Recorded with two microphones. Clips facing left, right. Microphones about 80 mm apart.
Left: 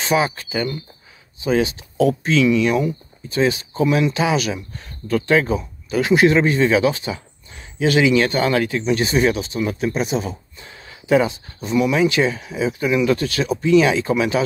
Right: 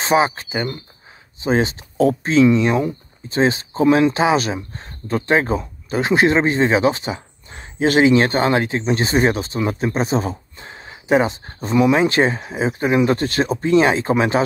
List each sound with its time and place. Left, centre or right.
0.0 s speech: right
11.4 s speech: right